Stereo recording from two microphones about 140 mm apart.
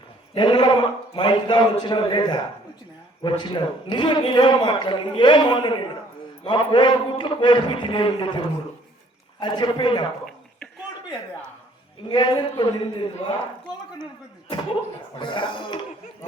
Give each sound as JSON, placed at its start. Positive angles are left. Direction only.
{"t": 0.3, "sound": "a man's voice", "side_deg": 30}
{"t": 12.0, "sound": "a man's voice", "side_deg": 30}